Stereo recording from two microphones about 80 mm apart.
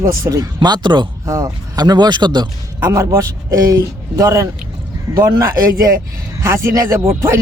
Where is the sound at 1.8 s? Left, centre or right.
Right.